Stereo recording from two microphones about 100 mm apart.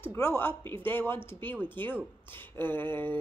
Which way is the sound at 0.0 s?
20° left (ahead or behind).